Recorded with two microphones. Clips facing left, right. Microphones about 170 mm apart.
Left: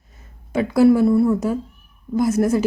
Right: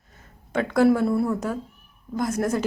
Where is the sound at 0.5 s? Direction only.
5° left (ahead or behind).